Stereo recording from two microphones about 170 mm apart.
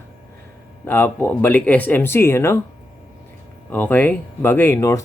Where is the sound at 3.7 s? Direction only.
10° left (ahead or behind).